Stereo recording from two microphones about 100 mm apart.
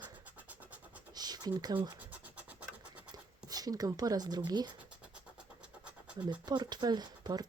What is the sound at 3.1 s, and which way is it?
Speech, 40° right (ahead or behind).